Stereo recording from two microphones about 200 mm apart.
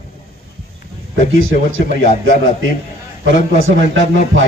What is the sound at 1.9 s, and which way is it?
A man's voice, 45° left (ahead or behind).